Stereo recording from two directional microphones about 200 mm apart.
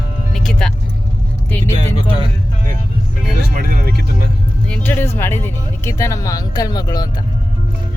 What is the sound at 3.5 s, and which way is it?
Music, 50° right (ahead or behind).